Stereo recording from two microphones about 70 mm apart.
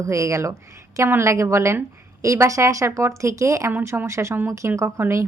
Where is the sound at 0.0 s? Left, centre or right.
Right.